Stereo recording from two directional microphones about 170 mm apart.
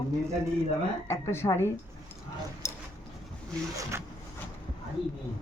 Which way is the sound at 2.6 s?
15° left (ahead or behind).